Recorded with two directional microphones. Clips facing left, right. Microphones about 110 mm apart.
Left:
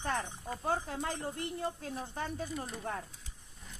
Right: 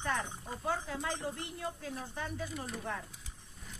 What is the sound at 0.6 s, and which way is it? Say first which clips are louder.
Speech: left 2 dB; 40° left (ahead or behind).